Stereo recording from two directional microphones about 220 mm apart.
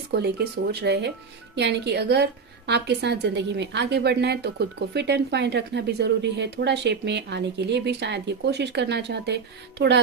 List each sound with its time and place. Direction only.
0.1 s speech: 50° right (ahead or behind)